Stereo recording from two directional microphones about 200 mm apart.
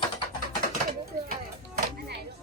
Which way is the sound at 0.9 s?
50° right (ahead or behind).